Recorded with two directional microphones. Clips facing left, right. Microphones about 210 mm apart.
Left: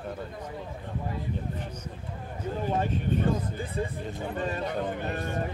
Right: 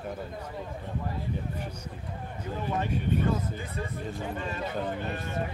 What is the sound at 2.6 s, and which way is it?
Speech, 40° left (ahead or behind).